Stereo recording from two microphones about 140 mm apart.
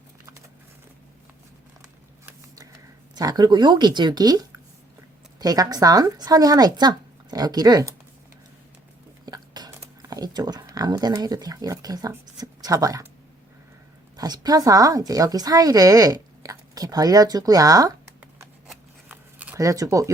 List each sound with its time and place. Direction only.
2.2 s a sound: 25° right (ahead or behind)
5.4 s a woman's voice: 25° right (ahead or behind)
9.2 s whispering: 30° right (ahead or behind)
14.2 s a woman's voice: 25° right (ahead or behind)
19.0 s a sound: 10° right (ahead or behind)
19.5 s a woman's voice: 25° right (ahead or behind)